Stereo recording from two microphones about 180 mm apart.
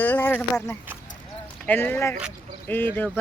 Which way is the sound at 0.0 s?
10° left (ahead or behind).